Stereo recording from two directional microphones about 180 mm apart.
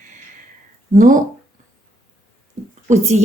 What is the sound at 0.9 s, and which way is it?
Speech, 45° right (ahead or behind).